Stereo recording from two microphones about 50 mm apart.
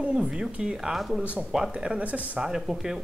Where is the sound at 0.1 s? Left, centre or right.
Centre.